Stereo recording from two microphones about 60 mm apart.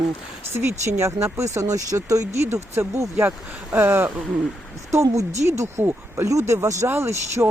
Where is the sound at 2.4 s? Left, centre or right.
Right.